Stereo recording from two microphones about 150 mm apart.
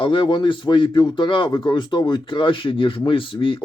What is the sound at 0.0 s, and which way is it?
A man's voice, 35° left (ahead or behind).